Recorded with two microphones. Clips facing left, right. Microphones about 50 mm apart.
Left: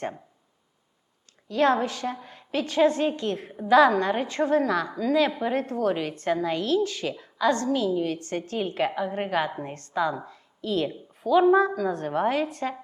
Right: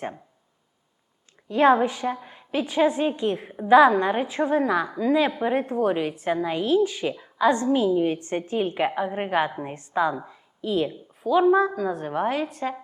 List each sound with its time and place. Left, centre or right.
1.5 s a woman's voice: right
10.2 s a sound: centre
10.8 s a woman's voice: centre